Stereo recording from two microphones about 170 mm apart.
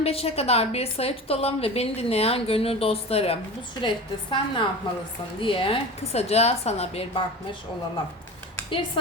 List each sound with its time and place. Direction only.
0.0 s a woman's voice: 35° left (ahead or behind)